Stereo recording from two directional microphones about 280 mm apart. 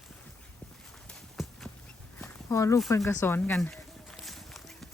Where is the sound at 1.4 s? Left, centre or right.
Centre.